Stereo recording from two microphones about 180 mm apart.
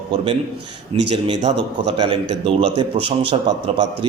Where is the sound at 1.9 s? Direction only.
25° right (ahead or behind).